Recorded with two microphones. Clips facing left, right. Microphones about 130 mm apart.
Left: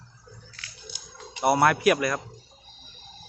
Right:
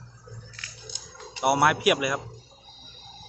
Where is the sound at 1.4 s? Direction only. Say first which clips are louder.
Left 1 dB; 10° right (ahead or behind).